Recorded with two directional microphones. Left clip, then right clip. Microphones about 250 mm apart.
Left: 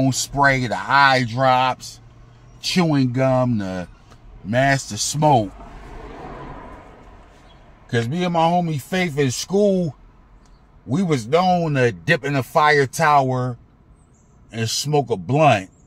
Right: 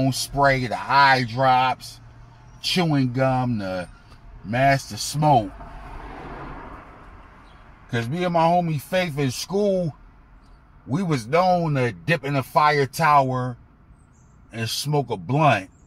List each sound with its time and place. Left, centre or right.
0.0 s a man's voice: left
2.7 s a man's voice: left
8.3 s a man's voice: left
14.5 s a man's voice: left